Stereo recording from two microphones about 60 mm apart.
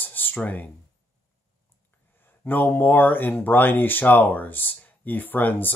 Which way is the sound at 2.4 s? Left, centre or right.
Left.